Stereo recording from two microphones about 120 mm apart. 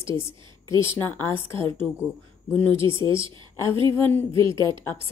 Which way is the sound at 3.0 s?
45° right (ahead or behind).